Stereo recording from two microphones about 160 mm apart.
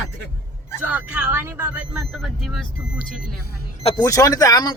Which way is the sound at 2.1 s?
Centre (ahead or behind).